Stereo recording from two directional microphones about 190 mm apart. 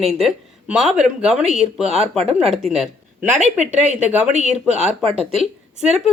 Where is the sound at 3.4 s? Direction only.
35° right (ahead or behind).